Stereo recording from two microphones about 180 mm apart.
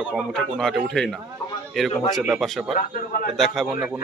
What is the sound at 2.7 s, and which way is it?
Speech, 45° left (ahead or behind).